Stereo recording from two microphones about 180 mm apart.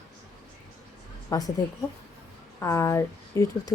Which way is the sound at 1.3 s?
15° left (ahead or behind).